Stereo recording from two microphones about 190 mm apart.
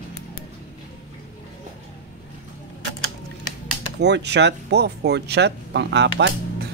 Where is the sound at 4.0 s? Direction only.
65° right (ahead or behind).